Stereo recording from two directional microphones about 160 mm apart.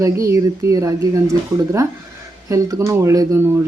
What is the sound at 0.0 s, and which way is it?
Speech, 20° right (ahead or behind).